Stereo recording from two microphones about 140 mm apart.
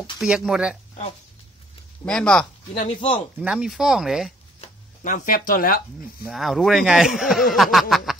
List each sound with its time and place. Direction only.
0.2 s speech: 5° right (ahead or behind)
2.0 s speech: 5° left (ahead or behind)
2.7 s speech: 45° left (ahead or behind)
3.3 s speech: 5° right (ahead or behind)
5.0 s speech: 70° left (ahead or behind)
5.5 s speech: 90° left
6.3 s speech: centre (ahead or behind)
7.9 s a sound: centre (ahead or behind)